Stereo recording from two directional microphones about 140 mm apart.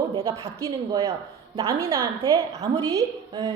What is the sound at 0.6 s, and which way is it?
Speech, 25° right (ahead or behind).